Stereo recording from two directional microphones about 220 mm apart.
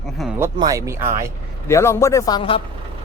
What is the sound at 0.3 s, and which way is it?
Speech, 15° right (ahead or behind).